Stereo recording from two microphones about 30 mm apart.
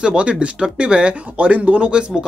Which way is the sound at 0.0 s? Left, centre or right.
Right.